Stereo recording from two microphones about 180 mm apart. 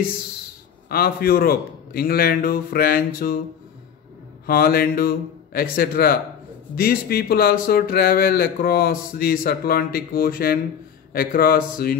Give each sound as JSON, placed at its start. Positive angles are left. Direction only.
{"t": 0.8, "sound": "speech", "side_deg": 55}
{"t": 4.5, "sound": "speech", "side_deg": 55}